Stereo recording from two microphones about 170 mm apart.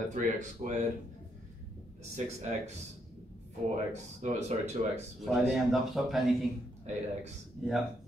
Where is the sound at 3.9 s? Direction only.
40° right (ahead or behind).